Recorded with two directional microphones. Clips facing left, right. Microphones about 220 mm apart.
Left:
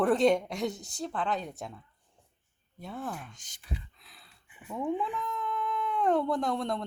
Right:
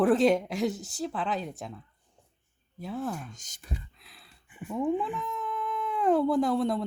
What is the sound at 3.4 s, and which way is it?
Speech, 45° right (ahead or behind).